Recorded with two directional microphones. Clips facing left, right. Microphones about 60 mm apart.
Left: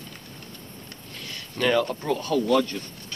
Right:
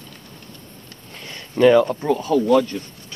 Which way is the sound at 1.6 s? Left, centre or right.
Centre.